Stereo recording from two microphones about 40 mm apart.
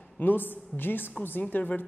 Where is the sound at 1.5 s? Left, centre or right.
Left.